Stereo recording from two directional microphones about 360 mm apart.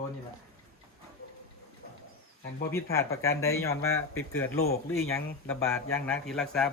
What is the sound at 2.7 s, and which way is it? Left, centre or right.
Speech, centre.